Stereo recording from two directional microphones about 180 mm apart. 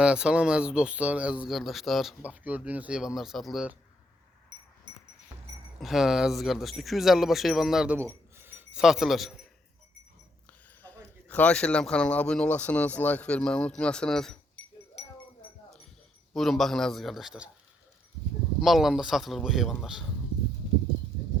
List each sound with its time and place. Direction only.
0.0 s speech: 5° right (ahead or behind)
4.9 s music: 25° right (ahead or behind)
5.8 s speech: centre (ahead or behind)
7.9 s a sound: 15° right (ahead or behind)
11.3 s speech: 10° left (ahead or behind)
16.3 s speech: centre (ahead or behind)
18.6 s speech: centre (ahead or behind)